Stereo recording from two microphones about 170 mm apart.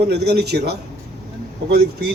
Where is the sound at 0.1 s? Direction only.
75° right (ahead or behind).